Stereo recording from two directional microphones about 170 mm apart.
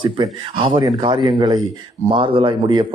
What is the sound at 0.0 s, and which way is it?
Speech, 30° right (ahead or behind).